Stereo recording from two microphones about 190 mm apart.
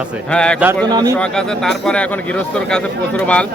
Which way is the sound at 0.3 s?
5° left (ahead or behind).